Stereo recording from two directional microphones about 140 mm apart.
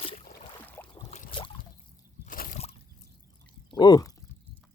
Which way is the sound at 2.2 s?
85° left.